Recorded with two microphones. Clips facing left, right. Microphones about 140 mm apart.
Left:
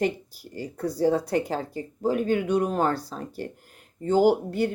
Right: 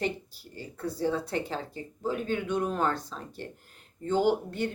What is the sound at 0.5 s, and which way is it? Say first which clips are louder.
Speech: left 6 dB; 35° left (ahead or behind).